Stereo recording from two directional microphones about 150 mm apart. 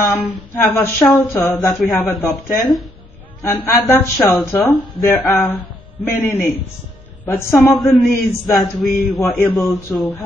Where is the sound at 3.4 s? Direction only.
20° left (ahead or behind).